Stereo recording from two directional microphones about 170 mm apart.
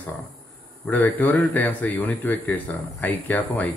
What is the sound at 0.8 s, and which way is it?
A man's voice, 10° left (ahead or behind).